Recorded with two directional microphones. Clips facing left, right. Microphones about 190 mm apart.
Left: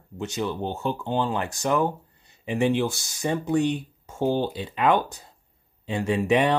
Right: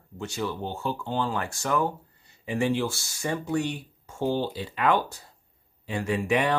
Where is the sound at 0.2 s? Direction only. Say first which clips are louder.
Left 3 dB; 20° left (ahead or behind).